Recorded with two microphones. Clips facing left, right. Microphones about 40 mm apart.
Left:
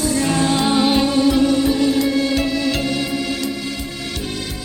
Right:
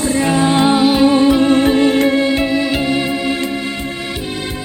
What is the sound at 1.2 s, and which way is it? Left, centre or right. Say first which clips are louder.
Music: right 3 dB; right.